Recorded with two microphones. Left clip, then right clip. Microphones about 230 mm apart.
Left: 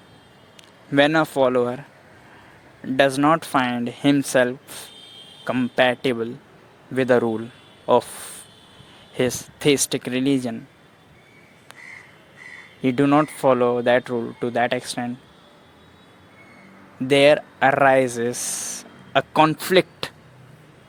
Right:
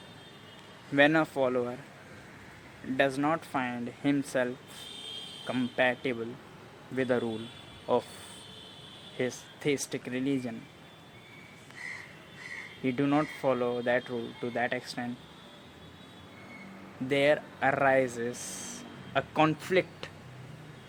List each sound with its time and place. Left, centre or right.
0.9 s speech: left
3.0 s speech: left
9.1 s speech: left
12.8 s speech: left
17.1 s speech: left